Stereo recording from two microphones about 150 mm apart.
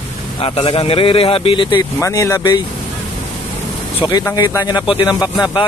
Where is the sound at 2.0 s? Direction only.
20° left (ahead or behind).